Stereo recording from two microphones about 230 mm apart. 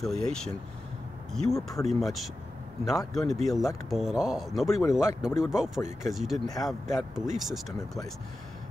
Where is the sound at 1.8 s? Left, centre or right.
Centre.